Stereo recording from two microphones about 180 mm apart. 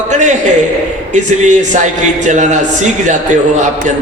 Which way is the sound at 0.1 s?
40° right (ahead or behind).